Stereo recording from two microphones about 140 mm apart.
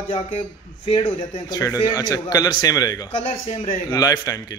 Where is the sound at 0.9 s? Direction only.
40° left (ahead or behind).